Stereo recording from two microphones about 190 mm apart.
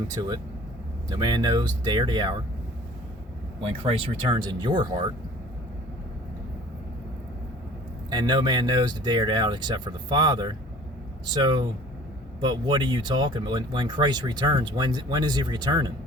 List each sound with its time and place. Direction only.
0.1 s speech: 20° right (ahead or behind)
3.6 s speech: 30° right (ahead or behind)
8.1 s speech: 20° right (ahead or behind)